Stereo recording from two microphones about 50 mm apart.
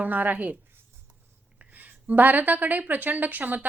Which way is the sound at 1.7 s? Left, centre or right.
Right.